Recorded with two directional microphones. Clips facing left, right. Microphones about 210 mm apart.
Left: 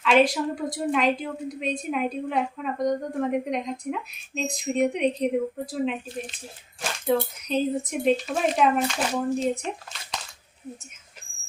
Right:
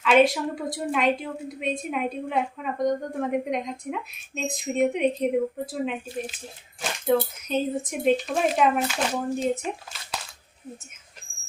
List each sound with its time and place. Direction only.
0.0 s a woman's voice: centre (ahead or behind)